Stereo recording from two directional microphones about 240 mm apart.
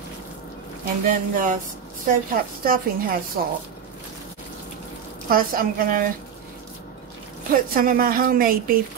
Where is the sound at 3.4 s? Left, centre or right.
Right.